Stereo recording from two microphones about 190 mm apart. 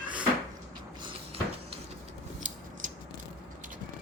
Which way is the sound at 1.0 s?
30° right (ahead or behind).